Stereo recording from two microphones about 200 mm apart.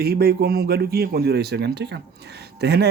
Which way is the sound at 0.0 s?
50° right (ahead or behind).